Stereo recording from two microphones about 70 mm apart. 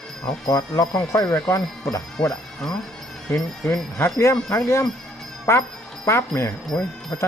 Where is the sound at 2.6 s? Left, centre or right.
Centre.